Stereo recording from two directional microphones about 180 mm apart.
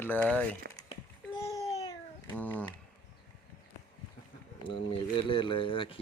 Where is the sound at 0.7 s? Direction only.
60° right (ahead or behind).